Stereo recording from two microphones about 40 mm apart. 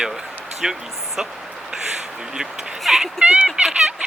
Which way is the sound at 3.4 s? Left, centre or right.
Centre.